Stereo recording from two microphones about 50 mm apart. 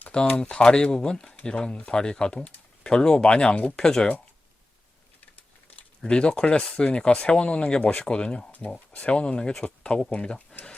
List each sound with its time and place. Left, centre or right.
0.1 s speech: centre
6.0 s speech: centre
10.5 s a sound: left